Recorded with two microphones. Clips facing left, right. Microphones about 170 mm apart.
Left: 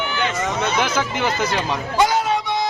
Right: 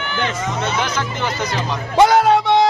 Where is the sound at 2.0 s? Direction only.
65° right (ahead or behind).